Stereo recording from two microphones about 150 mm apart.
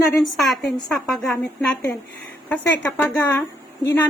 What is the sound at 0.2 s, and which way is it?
A woman's voice, centre (ahead or behind).